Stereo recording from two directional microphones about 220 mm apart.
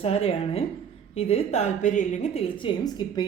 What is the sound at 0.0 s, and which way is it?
A woman's voice, 25° left (ahead or behind).